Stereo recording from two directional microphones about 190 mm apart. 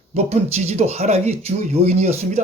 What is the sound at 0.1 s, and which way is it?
Speech, 35° right (ahead or behind).